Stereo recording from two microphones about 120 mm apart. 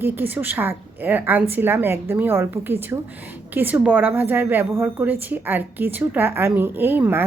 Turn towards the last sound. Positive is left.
turn(degrees=-15)  # may be behind; listen again after turning